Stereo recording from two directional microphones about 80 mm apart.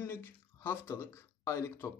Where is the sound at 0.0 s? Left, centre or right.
Left.